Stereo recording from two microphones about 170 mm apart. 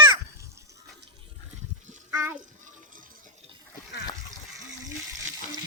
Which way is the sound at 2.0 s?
10° right (ahead or behind).